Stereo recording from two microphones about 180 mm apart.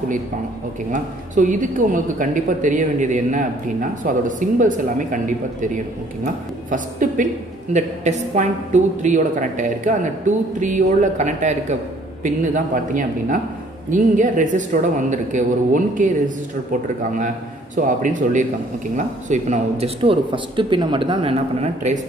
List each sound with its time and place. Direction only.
0.9 s speech: 45° right (ahead or behind)
17.7 s speech: 45° right (ahead or behind)